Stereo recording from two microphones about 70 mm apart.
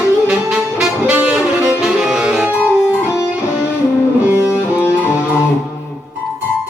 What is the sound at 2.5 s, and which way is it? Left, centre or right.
Music, left.